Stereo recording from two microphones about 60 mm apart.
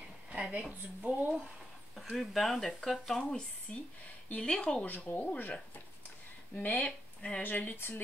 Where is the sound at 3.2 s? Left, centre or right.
Left.